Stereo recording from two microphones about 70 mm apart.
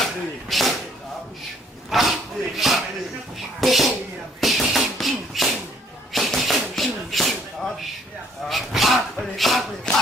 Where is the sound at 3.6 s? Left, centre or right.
Centre.